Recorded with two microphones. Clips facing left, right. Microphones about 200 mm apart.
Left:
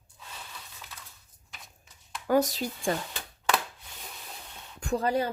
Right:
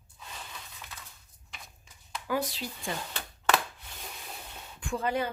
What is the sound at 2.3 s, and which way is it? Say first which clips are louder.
Speech: left 7 dB; 45° left (ahead or behind).